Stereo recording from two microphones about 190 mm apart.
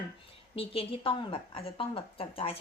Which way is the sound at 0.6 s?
30° left (ahead or behind).